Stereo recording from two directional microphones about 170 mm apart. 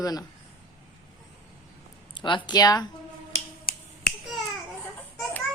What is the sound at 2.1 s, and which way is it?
Speech, 30° left (ahead or behind).